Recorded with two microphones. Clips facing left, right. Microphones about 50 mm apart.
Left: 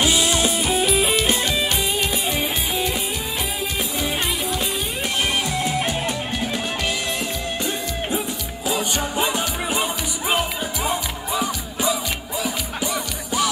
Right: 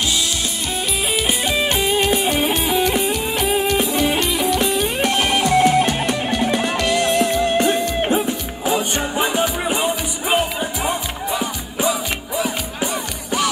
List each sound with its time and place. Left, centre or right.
0.0 s music: left
0.7 s music: centre
1.5 s music: right
3.3 s music: right
4.4 s music: right
12.4 s music: right